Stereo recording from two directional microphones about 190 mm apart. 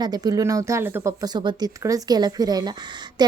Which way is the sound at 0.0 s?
20° right (ahead or behind).